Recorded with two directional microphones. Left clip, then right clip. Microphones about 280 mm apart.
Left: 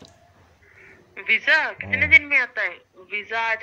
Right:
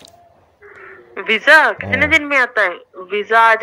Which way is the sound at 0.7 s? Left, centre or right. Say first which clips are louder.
Right 12 dB; right.